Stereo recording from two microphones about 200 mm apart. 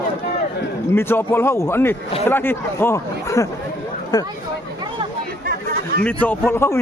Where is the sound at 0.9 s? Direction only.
10° left (ahead or behind).